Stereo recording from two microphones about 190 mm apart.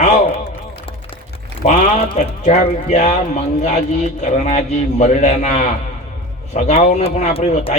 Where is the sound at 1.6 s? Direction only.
40° left (ahead or behind).